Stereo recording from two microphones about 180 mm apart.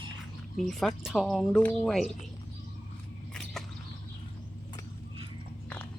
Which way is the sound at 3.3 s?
Centre (ahead or behind).